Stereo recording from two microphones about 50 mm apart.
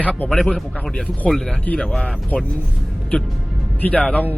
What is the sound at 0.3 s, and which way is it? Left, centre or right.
Speech, centre.